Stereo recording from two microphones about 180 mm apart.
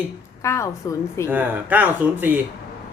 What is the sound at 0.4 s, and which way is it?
Speech, 15° left (ahead or behind).